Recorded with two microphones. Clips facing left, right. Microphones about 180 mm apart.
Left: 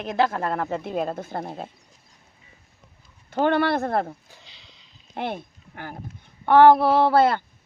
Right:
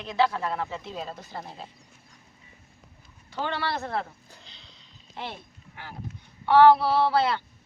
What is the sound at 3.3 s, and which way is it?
Speech, 55° left (ahead or behind).